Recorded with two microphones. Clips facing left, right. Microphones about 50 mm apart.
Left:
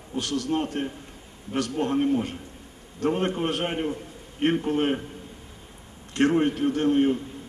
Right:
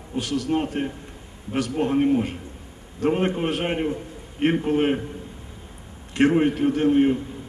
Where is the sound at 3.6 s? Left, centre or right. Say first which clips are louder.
Right 3 dB; right.